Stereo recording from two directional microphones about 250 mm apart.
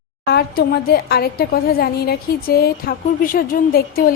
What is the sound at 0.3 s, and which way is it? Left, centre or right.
A woman's voice, left.